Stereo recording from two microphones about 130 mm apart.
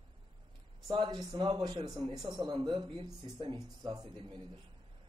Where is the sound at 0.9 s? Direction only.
35° right (ahead or behind).